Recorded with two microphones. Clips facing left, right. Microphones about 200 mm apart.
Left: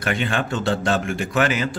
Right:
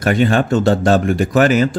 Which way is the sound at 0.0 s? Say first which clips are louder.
Right 9 dB; 40° right (ahead or behind).